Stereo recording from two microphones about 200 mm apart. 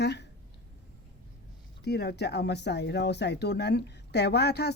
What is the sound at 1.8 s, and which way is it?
Speech, 55° left (ahead or behind).